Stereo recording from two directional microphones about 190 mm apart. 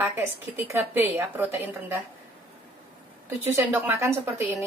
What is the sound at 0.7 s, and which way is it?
A woman's voice, 10° right (ahead or behind).